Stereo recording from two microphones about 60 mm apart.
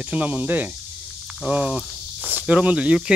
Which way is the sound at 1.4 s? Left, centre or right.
Centre.